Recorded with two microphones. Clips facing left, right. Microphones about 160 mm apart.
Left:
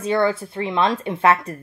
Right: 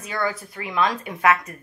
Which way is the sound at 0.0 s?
25° left (ahead or behind).